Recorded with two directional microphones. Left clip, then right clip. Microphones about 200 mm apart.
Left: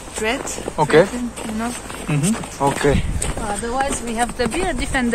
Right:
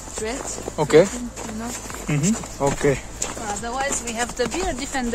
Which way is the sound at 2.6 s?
60° right (ahead or behind).